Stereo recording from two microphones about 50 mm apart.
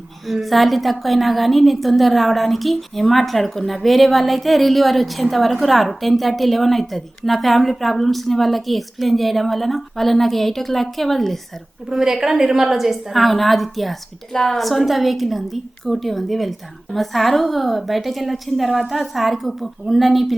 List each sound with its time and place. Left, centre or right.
0.4 s a woman's voice: centre
11.9 s a woman's voice: centre